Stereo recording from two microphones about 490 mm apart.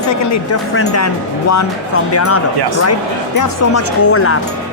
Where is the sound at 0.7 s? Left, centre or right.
Left.